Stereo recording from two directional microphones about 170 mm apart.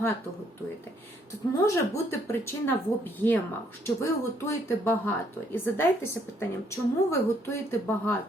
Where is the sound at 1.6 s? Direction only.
15° left (ahead or behind).